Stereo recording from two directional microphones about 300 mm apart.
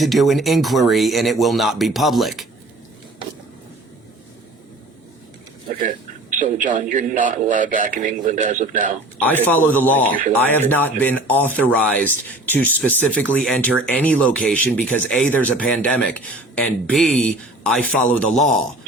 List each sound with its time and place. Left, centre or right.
0.0 s speech: centre
6.3 s a man's voice: right
9.2 s speech: centre